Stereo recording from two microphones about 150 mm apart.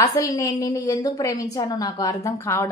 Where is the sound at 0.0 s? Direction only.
25° left (ahead or behind).